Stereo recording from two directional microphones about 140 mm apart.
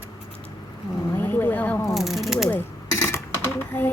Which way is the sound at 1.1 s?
15° left (ahead or behind).